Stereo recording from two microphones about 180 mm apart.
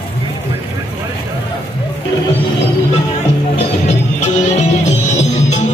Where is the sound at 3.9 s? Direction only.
40° left (ahead or behind).